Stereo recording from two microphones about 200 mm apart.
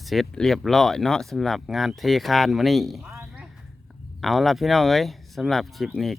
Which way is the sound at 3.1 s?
15° right (ahead or behind).